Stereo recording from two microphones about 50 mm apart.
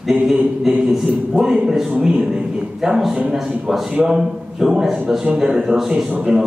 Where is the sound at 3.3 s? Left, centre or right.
Centre.